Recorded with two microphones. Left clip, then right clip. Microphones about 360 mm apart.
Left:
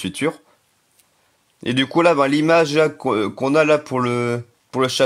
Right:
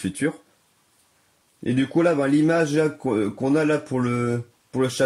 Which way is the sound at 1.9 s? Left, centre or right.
Left.